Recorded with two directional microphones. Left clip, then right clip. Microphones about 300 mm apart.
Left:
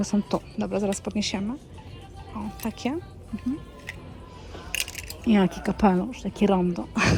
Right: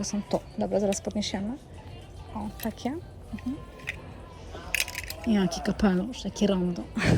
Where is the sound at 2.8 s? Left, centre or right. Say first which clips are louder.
Left 4 dB; left.